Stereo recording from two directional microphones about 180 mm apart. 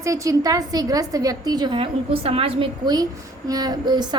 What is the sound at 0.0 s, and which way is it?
A woman's voice, 15° right (ahead or behind).